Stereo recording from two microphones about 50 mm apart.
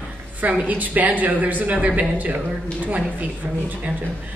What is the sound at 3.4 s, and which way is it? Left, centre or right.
Speech, right.